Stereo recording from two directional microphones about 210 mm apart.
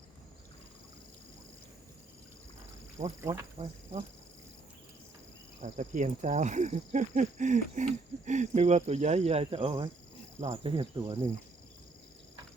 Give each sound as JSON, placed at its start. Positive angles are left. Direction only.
{"t": 3.0, "sound": "speech", "side_deg": -30}
{"t": 5.6, "sound": "speech", "side_deg": -35}